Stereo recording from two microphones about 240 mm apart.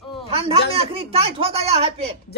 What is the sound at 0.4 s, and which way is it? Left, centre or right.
Speech, right.